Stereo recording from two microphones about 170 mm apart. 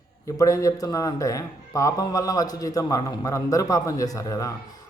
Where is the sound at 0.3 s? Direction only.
20° left (ahead or behind).